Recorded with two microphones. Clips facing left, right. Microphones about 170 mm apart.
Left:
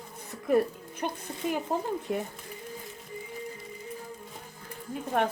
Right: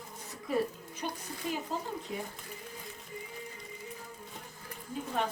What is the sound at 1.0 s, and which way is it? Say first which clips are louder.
Speech: left 5 dB; 55° left (ahead or behind).